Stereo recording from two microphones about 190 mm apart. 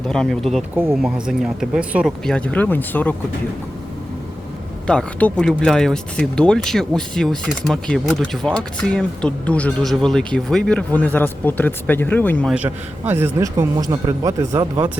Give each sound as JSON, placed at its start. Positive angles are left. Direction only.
{"t": 0.1, "sound": "speech", "side_deg": 5}
{"t": 4.9, "sound": "speech", "side_deg": 5}
{"t": 12.5, "sound": "a man's voice", "side_deg": -10}